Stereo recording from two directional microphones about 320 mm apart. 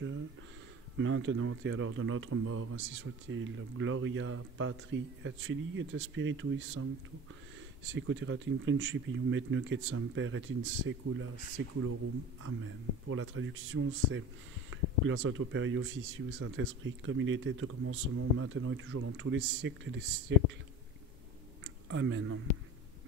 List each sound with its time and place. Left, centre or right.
0.9 s speech: right
21.8 s speech: right